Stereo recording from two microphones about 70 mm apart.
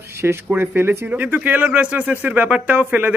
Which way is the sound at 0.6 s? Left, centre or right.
Right.